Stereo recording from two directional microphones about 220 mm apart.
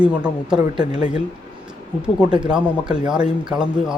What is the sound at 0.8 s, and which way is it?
Speech, 25° left (ahead or behind).